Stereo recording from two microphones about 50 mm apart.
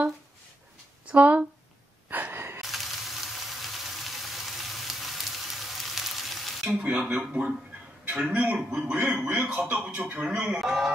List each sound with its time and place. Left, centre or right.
1.0 s speech: right
2.0 s a sound: right
2.6 s frying: centre
6.8 s a man's voice: right
10.6 s music: centre